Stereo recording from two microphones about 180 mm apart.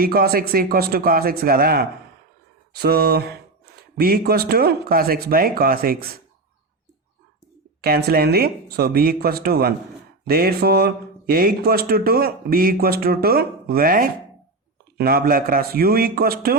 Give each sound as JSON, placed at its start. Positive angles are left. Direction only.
{"t": 0.0, "sound": "speech", "side_deg": -55}
{"t": 7.8, "sound": "speech", "side_deg": -60}